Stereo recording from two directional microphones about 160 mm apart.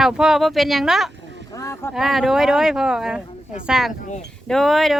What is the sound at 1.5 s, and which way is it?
Speech, 20° left (ahead or behind).